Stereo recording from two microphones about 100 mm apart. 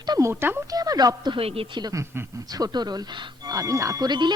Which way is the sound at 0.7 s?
40° right (ahead or behind).